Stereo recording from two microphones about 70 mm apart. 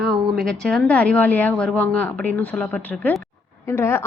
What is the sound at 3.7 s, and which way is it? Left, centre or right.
Speech, left.